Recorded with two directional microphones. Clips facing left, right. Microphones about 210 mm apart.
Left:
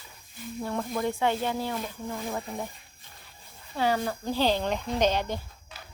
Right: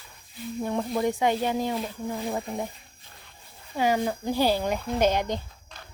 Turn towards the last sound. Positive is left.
turn(degrees=-15)  # may be behind; listen again after turning